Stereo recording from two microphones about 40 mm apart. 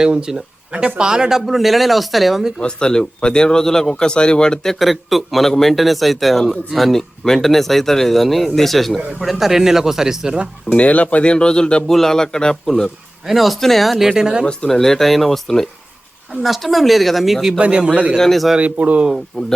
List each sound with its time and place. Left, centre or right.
0.0 s speech: centre
1.4 s speech: centre
2.6 s a man's voice: left
4.7 s speech: centre
9.4 s speech: centre
10.7 s a man's voice: left
11.9 s speech: centre
13.2 s speech: centre
14.0 s speech: centre
14.7 s speech: centre
17.6 s speech: right
18.2 s speech: centre
18.6 s speech: right
19.3 s speech: centre